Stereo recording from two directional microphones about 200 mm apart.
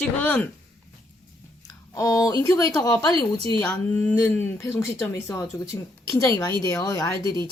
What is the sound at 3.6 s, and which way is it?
Speech, 5° left (ahead or behind).